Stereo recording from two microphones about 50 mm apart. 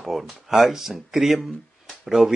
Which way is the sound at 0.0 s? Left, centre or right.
Centre.